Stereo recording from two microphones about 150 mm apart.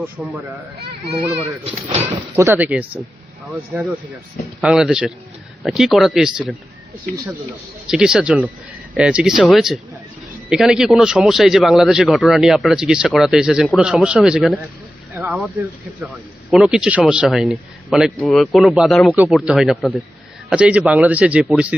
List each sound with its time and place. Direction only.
0.0 s speech: 10° right (ahead or behind)
1.7 s speech: 45° right (ahead or behind)
2.3 s speech: 15° right (ahead or behind)
4.6 s a man's voice: 5° right (ahead or behind)
7.9 s a man's voice: 5° right (ahead or behind)
15.1 s a sound: 10° right (ahead or behind)
15.4 s a man's voice: 10° right (ahead or behind)